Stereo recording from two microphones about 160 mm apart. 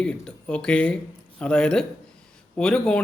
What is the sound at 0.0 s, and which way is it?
A man's voice, 5° left (ahead or behind).